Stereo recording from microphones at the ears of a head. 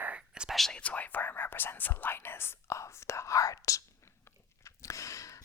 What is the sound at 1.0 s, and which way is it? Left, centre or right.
Whispering, left.